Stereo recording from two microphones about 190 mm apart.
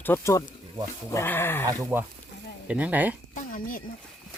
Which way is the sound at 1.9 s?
15° right (ahead or behind).